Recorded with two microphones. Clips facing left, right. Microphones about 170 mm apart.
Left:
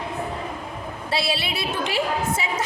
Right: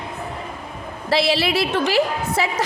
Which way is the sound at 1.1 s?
75° right (ahead or behind).